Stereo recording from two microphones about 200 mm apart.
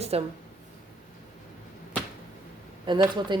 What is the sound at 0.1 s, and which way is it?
Speech, 30° right (ahead or behind).